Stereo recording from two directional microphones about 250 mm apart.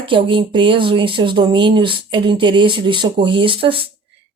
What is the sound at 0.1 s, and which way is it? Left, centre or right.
Speech, centre.